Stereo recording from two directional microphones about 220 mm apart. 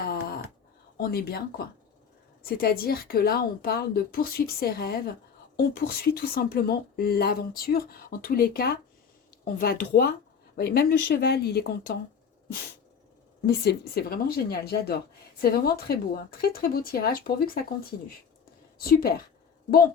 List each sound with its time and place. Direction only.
0.0 s a sound: 45° left (ahead or behind)
0.9 s speech: 45° left (ahead or behind)
13.4 s speech: 45° left (ahead or behind)
18.8 s speech: 40° left (ahead or behind)